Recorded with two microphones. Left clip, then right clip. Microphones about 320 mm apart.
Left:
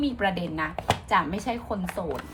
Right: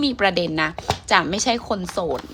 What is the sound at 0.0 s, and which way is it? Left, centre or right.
A woman's voice, right.